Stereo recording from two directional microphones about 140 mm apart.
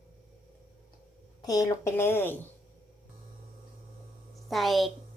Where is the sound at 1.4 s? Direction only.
25° left (ahead or behind).